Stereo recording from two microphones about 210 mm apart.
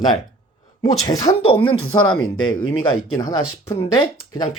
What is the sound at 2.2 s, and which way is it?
Speech, 75° left (ahead or behind).